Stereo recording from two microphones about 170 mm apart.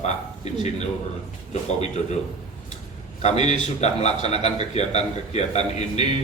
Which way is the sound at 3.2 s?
40° left (ahead or behind).